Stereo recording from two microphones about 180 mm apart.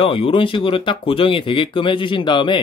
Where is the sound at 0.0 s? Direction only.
30° left (ahead or behind).